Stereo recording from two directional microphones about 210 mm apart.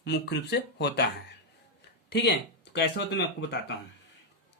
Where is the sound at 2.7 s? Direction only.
55° left (ahead or behind).